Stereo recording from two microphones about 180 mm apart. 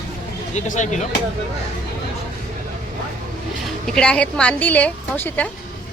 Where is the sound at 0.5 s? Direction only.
40° left (ahead or behind).